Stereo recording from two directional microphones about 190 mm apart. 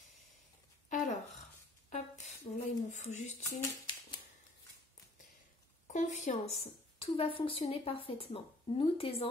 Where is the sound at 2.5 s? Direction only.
30° left (ahead or behind).